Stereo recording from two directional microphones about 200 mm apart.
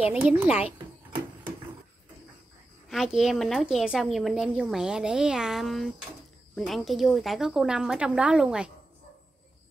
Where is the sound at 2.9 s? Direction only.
Centre (ahead or behind).